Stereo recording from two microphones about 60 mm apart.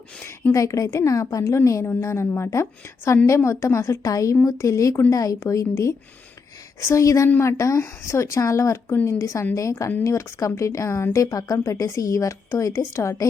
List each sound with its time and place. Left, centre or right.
0.5 s a woman's voice: left
1.5 s a woman's voice: left
6.7 s a woman's voice: left
11.6 s a woman's voice: left